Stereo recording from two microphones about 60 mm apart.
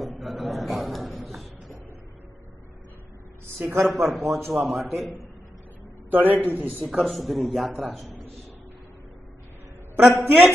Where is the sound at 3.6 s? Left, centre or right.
Right.